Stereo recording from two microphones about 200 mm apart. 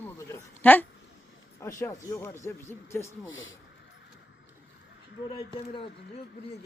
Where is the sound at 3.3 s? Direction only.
75° left (ahead or behind).